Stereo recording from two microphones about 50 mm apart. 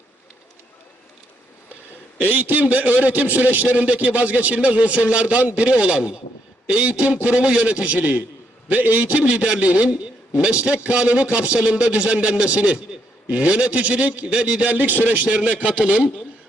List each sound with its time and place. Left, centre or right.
2.2 s a man's voice: right
6.7 s a sound: centre
7.0 s a man's voice: right
15.3 s a man's voice: right